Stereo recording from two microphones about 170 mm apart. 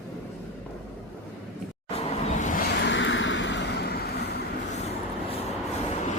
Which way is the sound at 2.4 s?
50° left (ahead or behind).